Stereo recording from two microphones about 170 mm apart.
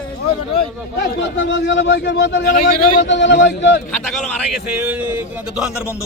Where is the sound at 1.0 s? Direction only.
90° left.